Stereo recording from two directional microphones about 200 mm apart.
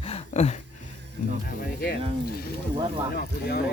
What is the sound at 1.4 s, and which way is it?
Music, 50° left (ahead or behind).